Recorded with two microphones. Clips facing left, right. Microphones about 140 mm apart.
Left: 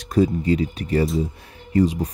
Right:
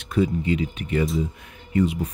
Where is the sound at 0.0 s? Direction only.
40° left (ahead or behind).